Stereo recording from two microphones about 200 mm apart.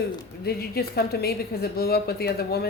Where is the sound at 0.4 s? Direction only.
50° left (ahead or behind).